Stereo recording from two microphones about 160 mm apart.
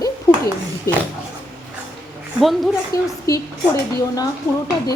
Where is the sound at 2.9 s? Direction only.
20° left (ahead or behind).